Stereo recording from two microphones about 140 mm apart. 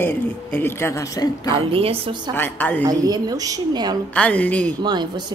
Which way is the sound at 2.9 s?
30° right (ahead or behind).